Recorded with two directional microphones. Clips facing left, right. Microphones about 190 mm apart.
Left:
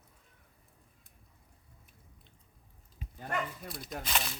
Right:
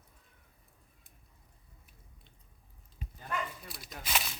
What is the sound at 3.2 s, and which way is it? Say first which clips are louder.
Dog: left 2 dB; 50° left (ahead or behind).